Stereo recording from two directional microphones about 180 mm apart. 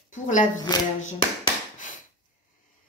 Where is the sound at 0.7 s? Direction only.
25° left (ahead or behind).